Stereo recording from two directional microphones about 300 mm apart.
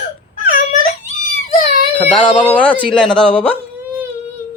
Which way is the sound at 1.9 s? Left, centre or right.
Centre.